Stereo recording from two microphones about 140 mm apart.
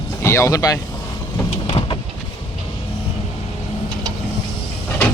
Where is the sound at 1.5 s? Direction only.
40° left (ahead or behind).